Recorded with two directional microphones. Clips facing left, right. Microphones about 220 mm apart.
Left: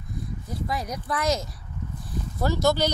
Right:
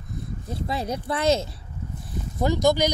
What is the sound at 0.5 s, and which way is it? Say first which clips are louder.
Speech: right 3 dB; 25° right (ahead or behind).